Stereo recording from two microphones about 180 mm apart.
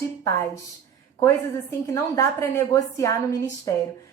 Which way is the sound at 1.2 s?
15° left (ahead or behind).